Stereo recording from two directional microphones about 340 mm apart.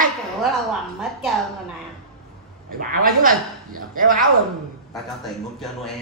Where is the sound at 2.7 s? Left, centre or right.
Right.